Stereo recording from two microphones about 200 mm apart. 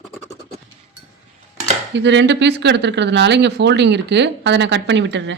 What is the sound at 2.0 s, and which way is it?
Speech, 60° right (ahead or behind).